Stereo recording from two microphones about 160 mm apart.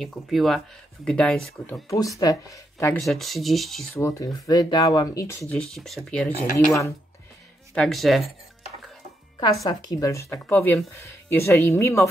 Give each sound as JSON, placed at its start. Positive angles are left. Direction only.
{"t": 0.0, "sound": "speech", "side_deg": 0}
{"t": 1.9, "sound": "speech", "side_deg": 20}
{"t": 3.0, "sound": "speech", "side_deg": 0}
{"t": 4.0, "sound": "speech", "side_deg": 20}
{"t": 5.5, "sound": "speech", "side_deg": 5}
{"t": 7.7, "sound": "speech", "side_deg": 5}
{"t": 9.4, "sound": "speech", "side_deg": 25}